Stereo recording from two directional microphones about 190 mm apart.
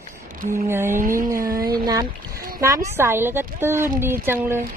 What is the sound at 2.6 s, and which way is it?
A woman's voice, 15° right (ahead or behind).